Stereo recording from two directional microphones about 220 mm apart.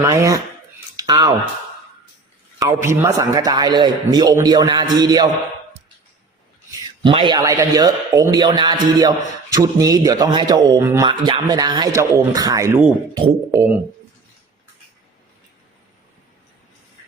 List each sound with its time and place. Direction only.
0.0 s a man's voice: 15° right (ahead or behind)
2.6 s a man's voice: 15° right (ahead or behind)
7.0 s a man's voice: 20° right (ahead or behind)